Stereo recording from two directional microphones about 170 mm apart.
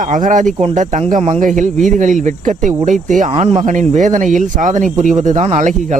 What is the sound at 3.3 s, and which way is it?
Speech, 35° right (ahead or behind).